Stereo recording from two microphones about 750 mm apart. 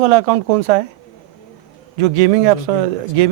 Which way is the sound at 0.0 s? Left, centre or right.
Right.